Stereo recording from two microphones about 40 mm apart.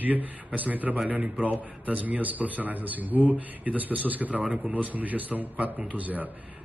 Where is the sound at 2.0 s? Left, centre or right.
Right.